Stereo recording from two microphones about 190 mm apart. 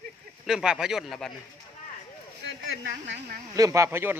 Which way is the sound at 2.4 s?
70° right (ahead or behind).